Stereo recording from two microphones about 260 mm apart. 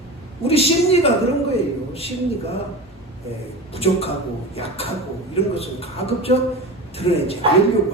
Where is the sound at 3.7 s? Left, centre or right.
Left.